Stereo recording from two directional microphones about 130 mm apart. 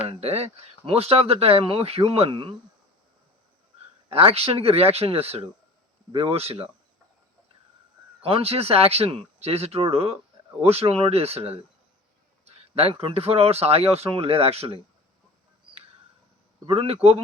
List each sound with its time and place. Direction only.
0.1 s speech: 50° right (ahead or behind)
4.1 s speech: 50° right (ahead or behind)
8.2 s speech: 50° right (ahead or behind)
16.6 s speech: 50° right (ahead or behind)